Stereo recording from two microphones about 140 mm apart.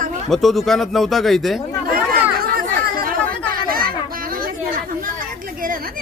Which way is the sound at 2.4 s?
90° right.